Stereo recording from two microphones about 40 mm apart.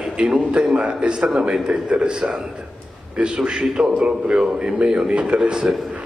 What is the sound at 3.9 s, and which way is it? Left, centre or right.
A man's voice, right.